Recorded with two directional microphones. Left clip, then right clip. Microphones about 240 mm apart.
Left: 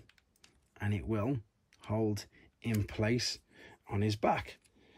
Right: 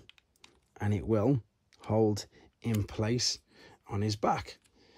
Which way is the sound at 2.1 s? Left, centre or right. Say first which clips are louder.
Right 4 dB; centre.